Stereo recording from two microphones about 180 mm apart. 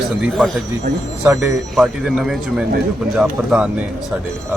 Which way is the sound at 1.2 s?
15° right (ahead or behind).